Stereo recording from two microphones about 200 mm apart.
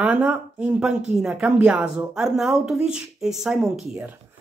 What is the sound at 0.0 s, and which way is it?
Speech, 5° right (ahead or behind).